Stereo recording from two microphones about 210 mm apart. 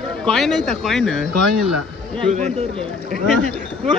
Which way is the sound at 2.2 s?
30° right (ahead or behind).